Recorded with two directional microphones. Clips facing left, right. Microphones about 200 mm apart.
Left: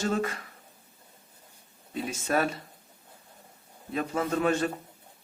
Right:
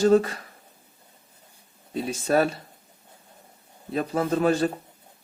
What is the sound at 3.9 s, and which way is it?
Speech, 35° right (ahead or behind).